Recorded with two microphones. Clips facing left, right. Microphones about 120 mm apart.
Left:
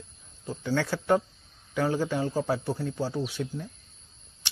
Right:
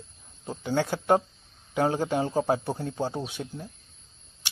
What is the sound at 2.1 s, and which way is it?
Speech, 25° right (ahead or behind).